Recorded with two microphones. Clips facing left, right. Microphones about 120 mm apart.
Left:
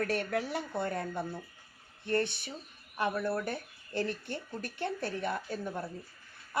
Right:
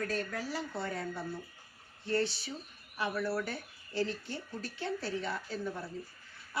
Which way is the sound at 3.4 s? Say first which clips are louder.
Left 4 dB; 55° left (ahead or behind).